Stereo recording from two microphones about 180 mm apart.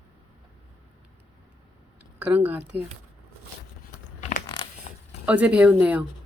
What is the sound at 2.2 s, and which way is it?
Speech, 10° right (ahead or behind).